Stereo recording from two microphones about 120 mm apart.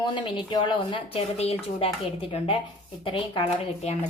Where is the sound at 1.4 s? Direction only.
60° left (ahead or behind).